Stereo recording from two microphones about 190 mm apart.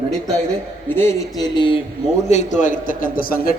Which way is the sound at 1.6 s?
25° left (ahead or behind).